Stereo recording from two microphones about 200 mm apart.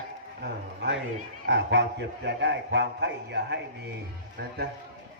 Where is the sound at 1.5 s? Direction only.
60° right (ahead or behind).